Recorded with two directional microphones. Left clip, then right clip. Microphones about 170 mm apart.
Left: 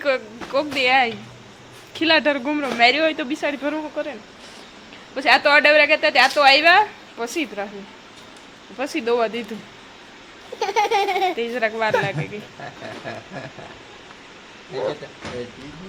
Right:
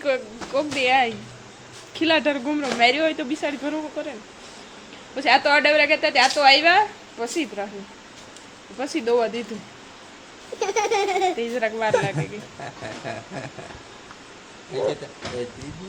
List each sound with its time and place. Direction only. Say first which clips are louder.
0.5 s a woman's voice: left 2 dB; 10° left (ahead or behind)
8.8 s a woman's voice: left 1 dB; 10° left (ahead or behind)
10.6 s baby laughter: left 3 dB; 20° right (ahead or behind)
11.3 s a woman's voice: left 2 dB; 10° left (ahead or behind)
13.1 s a sound: right 1 dB; 50° right (ahead or behind)
14.7 s a sound: right 1 dB; 45° right (ahead or behind)